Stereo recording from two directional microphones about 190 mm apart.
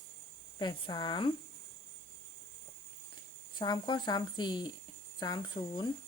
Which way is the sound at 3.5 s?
25° left (ahead or behind).